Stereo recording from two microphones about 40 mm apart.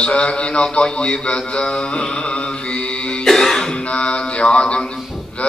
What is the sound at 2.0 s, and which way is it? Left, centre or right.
Music, left.